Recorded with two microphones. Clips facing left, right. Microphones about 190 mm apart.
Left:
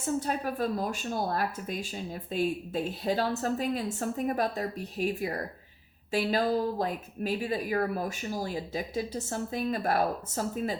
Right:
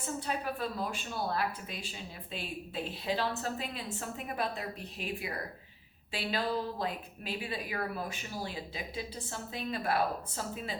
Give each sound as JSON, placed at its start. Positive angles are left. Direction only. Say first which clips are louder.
{"t": 0.0, "sound": "a woman's voice", "louder": "left 6 dB", "side_deg": 45}